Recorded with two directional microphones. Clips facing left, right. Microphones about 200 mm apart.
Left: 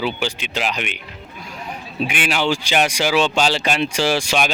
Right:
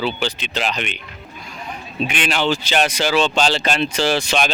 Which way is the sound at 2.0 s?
10° left (ahead or behind).